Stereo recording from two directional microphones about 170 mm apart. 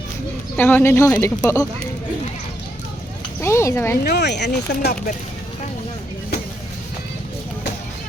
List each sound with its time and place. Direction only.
0.5 s speech: 10° left (ahead or behind)
3.4 s speech: 15° left (ahead or behind)
4.0 s speech: 75° left (ahead or behind)